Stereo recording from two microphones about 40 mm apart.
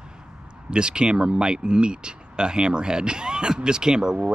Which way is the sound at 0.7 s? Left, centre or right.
Right.